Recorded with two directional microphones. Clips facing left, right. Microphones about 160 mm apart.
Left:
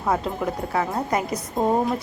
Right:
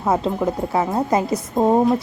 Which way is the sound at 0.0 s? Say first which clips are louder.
Right 4 dB; 25° right (ahead or behind).